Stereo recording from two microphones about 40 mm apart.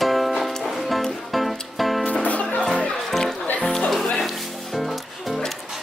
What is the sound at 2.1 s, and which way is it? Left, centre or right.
Music, left.